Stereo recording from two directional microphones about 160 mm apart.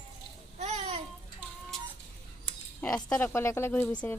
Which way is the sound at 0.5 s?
45° right (ahead or behind).